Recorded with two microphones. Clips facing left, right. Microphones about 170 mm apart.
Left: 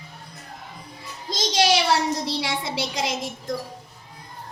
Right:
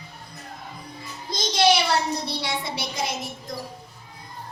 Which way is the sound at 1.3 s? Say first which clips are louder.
Even; 90° left.